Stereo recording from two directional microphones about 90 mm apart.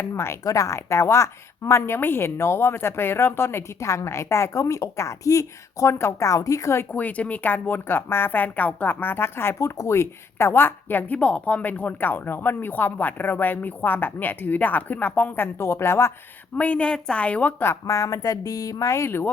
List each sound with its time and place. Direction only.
0.1 s a woman's voice: 30° left (ahead or behind)
6.9 s a woman's voice: 15° left (ahead or behind)
16.6 s a woman's voice: 15° left (ahead or behind)
17.8 s a woman's voice: 35° left (ahead or behind)